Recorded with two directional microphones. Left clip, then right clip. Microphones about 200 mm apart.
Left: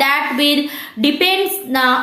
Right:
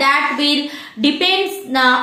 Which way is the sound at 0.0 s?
40° left (ahead or behind).